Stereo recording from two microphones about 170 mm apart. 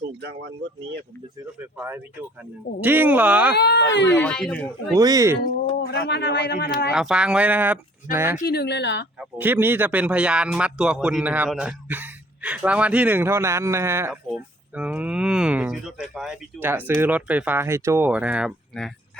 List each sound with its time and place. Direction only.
0.2 s speech: 80° right
2.8 s a man's voice: 10° right (ahead or behind)
3.6 s speech: 85° left
4.2 s speech: 5° left (ahead or behind)
4.9 s speech: 20° right (ahead or behind)
5.9 s a man's voice: 80° left
6.9 s a man's voice: 5° right (ahead or behind)
8.4 s a man's voice: 75° left (ahead or behind); by 9.0 s 90° left
9.4 s a man's voice: 10° right (ahead or behind)